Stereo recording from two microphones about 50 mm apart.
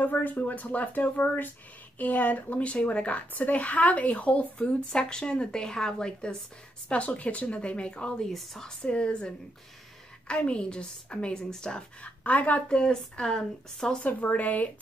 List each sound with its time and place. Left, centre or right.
0.0 s a woman's voice: left
8.3 s speech: centre
8.8 s a woman's voice: left
12.0 s a woman's voice: left
12.6 s speech: centre
14.0 s speech: left